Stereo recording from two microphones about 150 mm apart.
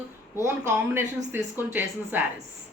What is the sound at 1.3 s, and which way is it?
Speech, 15° right (ahead or behind).